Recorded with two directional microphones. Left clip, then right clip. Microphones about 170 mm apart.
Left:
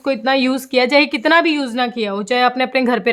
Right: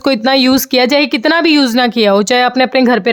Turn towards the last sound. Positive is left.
turn(degrees=-35)  # may be behind; listen again after turning